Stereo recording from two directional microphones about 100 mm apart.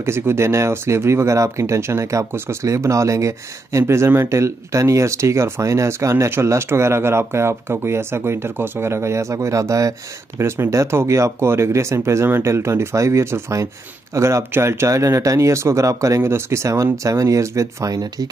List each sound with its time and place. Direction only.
0.0 s speech: 25° right (ahead or behind)